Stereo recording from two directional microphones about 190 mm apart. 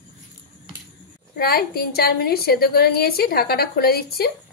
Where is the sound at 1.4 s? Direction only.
55° left (ahead or behind).